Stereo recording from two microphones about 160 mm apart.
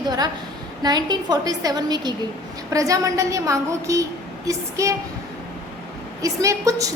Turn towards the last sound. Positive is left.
turn(degrees=-20)  # may be behind; listen again after turning